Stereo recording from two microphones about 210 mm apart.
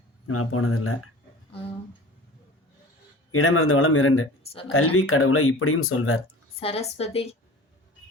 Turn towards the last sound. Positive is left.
turn(degrees=30)  # may be behind; listen again after turning